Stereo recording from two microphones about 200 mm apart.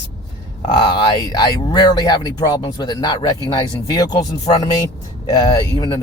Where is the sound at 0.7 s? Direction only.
20° left (ahead or behind).